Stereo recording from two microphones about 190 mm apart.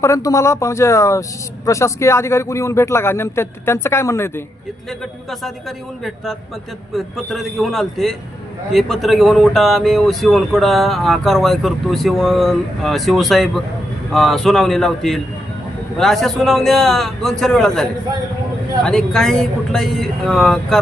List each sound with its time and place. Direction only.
0.0 s speech: 15° left (ahead or behind)
6.9 s speech: centre (ahead or behind)